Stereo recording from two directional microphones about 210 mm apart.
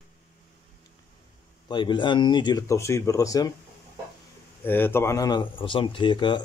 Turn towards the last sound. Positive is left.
turn(degrees=20)  # may be behind; listen again after turning